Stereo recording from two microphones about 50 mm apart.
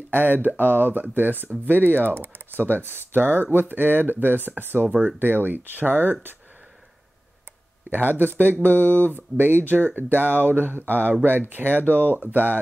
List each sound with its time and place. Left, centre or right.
0.1 s speech: right
7.9 s speech: right